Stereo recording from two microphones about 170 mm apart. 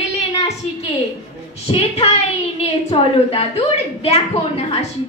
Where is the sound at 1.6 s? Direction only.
40° left (ahead or behind).